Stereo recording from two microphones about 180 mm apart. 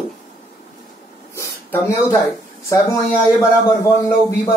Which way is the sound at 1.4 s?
15° left (ahead or behind).